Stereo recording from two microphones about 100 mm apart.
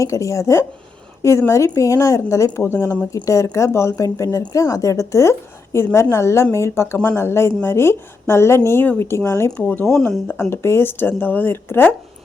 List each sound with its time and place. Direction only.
0.0 s a woman's voice: 30° left (ahead or behind)
9.8 s speech: 5° left (ahead or behind)
10.5 s a woman's voice: 25° left (ahead or behind)